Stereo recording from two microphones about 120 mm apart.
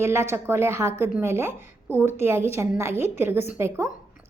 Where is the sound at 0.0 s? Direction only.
20° right (ahead or behind).